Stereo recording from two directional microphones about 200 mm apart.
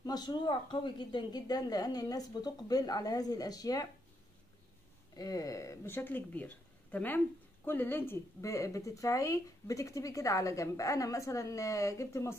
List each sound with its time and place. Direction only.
0.0 s speech: 20° left (ahead or behind)
5.1 s speech: 20° left (ahead or behind)